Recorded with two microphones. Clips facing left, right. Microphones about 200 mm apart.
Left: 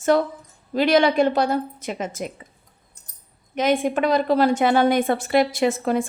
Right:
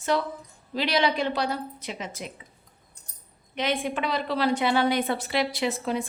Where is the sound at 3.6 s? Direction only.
45° left (ahead or behind).